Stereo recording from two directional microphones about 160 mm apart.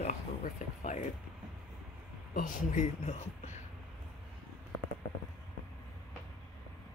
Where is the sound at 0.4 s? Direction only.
50° left (ahead or behind).